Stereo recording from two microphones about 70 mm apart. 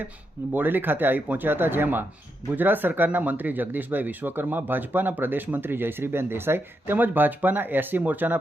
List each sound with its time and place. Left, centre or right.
0.5 s speech: right